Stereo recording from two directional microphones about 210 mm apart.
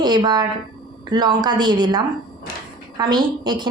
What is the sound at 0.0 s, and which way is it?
A woman's voice, 20° right (ahead or behind).